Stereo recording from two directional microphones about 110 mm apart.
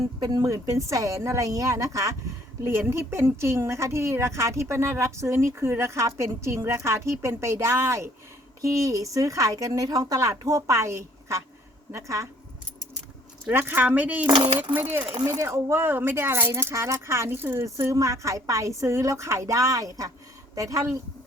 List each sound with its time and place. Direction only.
0.2 s a woman's voice: 35° right (ahead or behind)
13.5 s a woman's voice: 20° right (ahead or behind)